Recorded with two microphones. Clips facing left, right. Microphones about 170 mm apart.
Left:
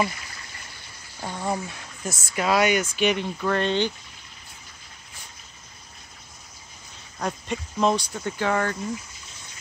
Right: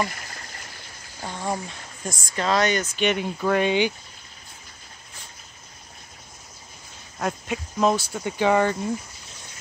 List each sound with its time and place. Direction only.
0.1 s a sound: 50° right (ahead or behind)
1.2 s speech: 10° left (ahead or behind)
3.2 s speech: 10° right (ahead or behind)
7.2 s speech: 5° right (ahead or behind)